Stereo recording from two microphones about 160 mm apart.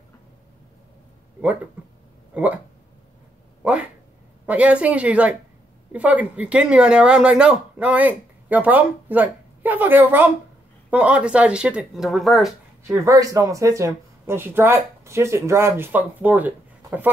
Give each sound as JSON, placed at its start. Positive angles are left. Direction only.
{"t": 2.3, "sound": "speech", "side_deg": -10}
{"t": 4.5, "sound": "speech", "side_deg": -10}
{"t": 12.8, "sound": "speech", "side_deg": -20}